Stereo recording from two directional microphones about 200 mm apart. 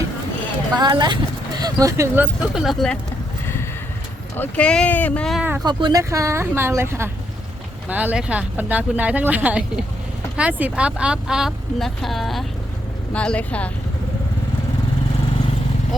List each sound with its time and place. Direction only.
0.8 s speech: 20° right (ahead or behind); by 3.0 s centre (ahead or behind)
3.4 s vehicle: 10° left (ahead or behind)
4.4 s speech: 5° left (ahead or behind)
5.6 s speech: 20° right (ahead or behind); by 13.7 s 5° left (ahead or behind)